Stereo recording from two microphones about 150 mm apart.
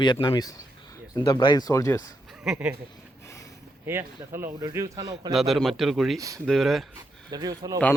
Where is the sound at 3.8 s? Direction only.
15° right (ahead or behind).